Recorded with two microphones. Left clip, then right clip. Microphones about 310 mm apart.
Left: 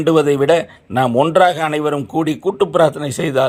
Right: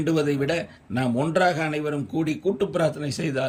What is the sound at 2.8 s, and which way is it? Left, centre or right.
Speech, left.